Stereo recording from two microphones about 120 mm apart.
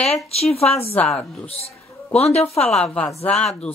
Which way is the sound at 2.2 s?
60° left (ahead or behind).